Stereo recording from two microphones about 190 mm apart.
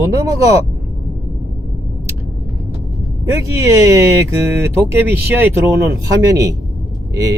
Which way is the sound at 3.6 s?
15° right (ahead or behind).